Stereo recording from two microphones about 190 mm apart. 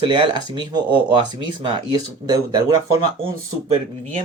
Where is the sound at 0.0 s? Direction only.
25° right (ahead or behind).